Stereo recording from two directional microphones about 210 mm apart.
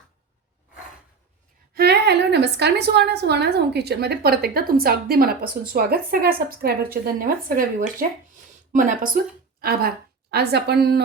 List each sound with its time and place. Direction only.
1.7 s a woman's voice: 50° right (ahead or behind)